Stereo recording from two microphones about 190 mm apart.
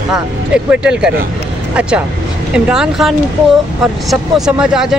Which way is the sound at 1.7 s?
5° right (ahead or behind).